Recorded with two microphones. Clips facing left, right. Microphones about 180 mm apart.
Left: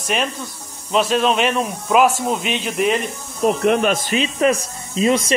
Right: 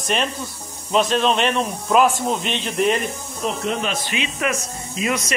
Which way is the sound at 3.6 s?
55° left (ahead or behind).